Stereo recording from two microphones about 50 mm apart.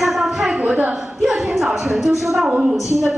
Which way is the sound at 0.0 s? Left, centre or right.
Centre.